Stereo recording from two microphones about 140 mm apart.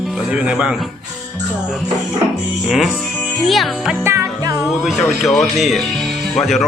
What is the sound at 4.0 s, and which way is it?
Music, 20° right (ahead or behind).